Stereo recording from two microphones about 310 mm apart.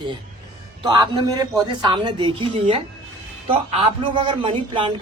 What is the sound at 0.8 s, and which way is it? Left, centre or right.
Speech, centre.